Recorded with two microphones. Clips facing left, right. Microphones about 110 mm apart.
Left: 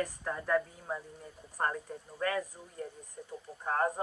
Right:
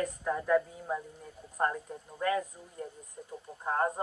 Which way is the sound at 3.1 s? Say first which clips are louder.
Even; 25° right (ahead or behind).